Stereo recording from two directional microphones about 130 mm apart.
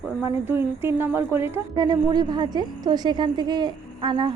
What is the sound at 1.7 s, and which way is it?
A woman's voice, 35° right (ahead or behind).